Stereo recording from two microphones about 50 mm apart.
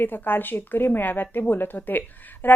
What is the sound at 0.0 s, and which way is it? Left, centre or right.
A woman's voice, left.